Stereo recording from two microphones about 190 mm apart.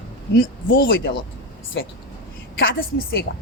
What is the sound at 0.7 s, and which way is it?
Speech, 65° left (ahead or behind).